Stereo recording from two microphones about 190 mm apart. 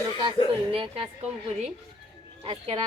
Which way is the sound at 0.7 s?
30° right (ahead or behind).